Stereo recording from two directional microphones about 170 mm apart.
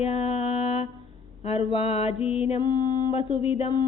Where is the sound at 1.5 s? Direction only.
35° left (ahead or behind).